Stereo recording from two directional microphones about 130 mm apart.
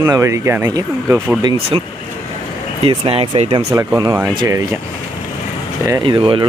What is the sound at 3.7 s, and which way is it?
Speech, 25° right (ahead or behind).